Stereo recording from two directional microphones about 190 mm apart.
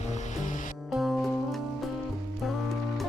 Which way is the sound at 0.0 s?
40° left (ahead or behind).